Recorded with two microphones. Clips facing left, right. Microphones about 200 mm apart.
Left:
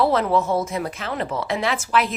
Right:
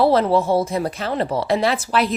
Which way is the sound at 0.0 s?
35° right (ahead or behind).